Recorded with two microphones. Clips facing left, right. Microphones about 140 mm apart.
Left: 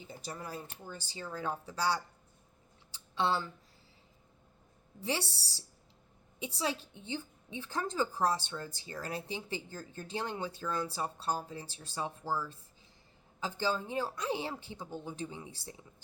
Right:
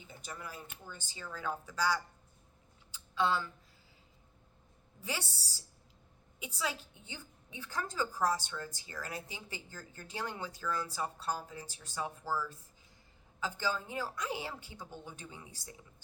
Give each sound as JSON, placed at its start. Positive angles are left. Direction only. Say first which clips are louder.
{"t": 0.0, "sound": "speech", "louder": "left 3 dB", "side_deg": 35}
{"t": 2.9, "sound": "a sound", "louder": "even", "side_deg": 30}
{"t": 5.0, "sound": "a woman's voice", "louder": "left 5 dB", "side_deg": 30}